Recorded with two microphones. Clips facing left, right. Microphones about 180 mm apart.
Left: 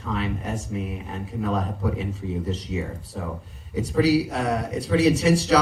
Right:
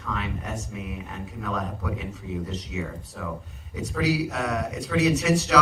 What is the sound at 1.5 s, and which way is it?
A man's voice, 30° left (ahead or behind).